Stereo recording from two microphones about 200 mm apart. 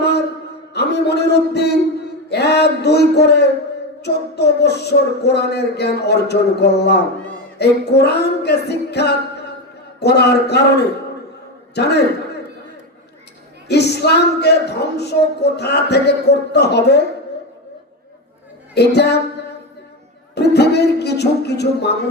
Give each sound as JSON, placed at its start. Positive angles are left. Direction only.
{"t": 0.0, "sound": "a sound", "side_deg": 55}
{"t": 0.7, "sound": "speech", "side_deg": 55}
{"t": 11.7, "sound": "a man's voice", "side_deg": 55}
{"t": 13.7, "sound": "speech", "side_deg": 55}
{"t": 18.7, "sound": "speech", "side_deg": 55}
{"t": 20.3, "sound": "speech", "side_deg": 55}